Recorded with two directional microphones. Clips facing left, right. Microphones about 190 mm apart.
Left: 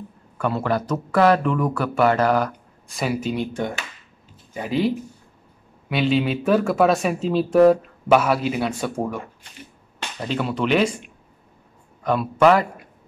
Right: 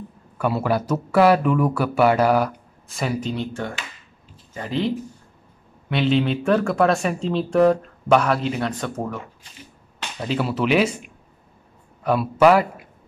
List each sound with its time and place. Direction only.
0.4 s speech: 10° right (ahead or behind); by 9.2 s 10° left (ahead or behind)
10.2 s speech: 5° right (ahead or behind)